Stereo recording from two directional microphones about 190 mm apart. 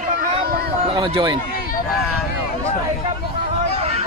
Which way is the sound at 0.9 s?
25° right (ahead or behind).